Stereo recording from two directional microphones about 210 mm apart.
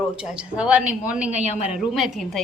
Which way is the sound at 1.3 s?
30° left (ahead or behind).